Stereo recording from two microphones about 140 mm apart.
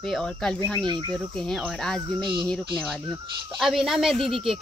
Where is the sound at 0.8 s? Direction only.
35° right (ahead or behind).